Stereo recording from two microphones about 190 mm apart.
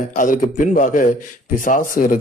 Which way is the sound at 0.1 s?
45° left (ahead or behind).